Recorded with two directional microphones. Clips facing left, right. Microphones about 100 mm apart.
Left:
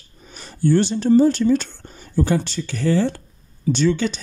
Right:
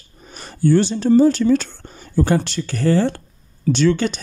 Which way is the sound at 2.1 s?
75° right (ahead or behind).